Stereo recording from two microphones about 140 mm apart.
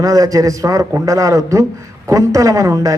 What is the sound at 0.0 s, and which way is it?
A man's voice, 25° right (ahead or behind).